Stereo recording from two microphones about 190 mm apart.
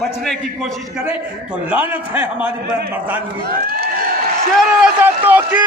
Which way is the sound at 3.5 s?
50° right (ahead or behind).